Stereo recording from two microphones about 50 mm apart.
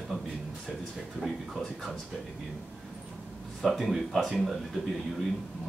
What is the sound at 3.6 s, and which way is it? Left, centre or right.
Speech, centre.